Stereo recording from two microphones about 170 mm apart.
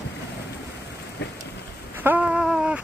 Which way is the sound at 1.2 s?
80° left.